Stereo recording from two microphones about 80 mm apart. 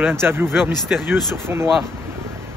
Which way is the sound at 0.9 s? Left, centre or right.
Centre.